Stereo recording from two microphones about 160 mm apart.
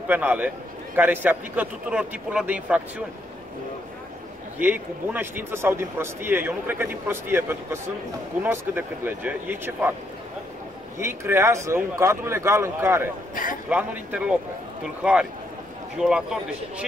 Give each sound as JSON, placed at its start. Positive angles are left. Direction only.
{"t": 0.1, "sound": "speech", "side_deg": -10}
{"t": 4.6, "sound": "speech", "side_deg": -10}
{"t": 11.0, "sound": "speech", "side_deg": -15}
{"t": 13.3, "sound": "a man's voice", "side_deg": 60}
{"t": 13.7, "sound": "a man's voice", "side_deg": -10}